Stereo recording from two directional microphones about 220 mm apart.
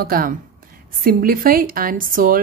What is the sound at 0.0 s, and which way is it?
A woman's voice, 40° right (ahead or behind).